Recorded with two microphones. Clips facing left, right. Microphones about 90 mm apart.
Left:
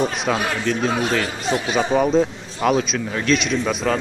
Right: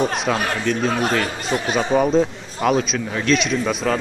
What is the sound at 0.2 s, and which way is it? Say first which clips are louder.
Speech: even; centre (ahead or behind).